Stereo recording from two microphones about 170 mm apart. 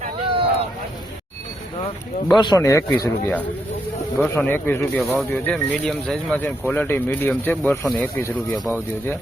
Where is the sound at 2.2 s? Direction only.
25° left (ahead or behind); by 8.6 s 10° left (ahead or behind).